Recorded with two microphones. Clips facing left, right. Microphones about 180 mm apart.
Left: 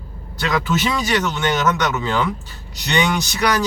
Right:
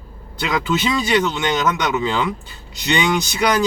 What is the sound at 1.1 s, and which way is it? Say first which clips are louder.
Speech: right 2 dB; 15° right (ahead or behind).